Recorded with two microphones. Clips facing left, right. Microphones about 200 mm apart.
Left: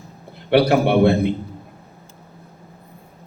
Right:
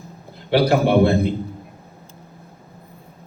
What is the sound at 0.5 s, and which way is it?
Speech, 60° left (ahead or behind).